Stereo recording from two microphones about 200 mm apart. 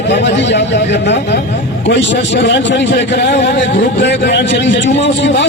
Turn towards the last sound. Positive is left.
turn(degrees=60)  # may be behind; listen again after turning